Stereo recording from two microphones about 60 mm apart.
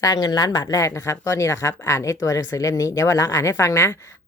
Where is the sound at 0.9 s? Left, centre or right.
Left.